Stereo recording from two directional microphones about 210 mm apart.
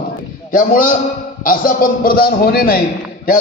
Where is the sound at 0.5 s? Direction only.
40° left (ahead or behind).